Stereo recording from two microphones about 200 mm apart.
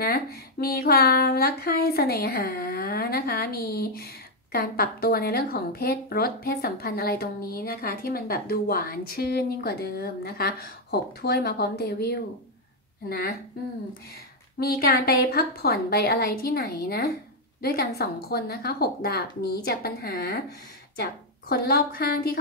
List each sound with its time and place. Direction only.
0.0 s speech: 50° left (ahead or behind)
14.6 s a woman's voice: 50° left (ahead or behind)